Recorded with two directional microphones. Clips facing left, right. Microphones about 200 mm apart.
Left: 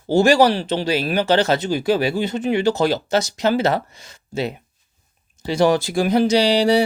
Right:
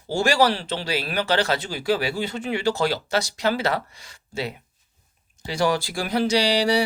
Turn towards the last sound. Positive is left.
turn(degrees=25)  # may be behind; listen again after turning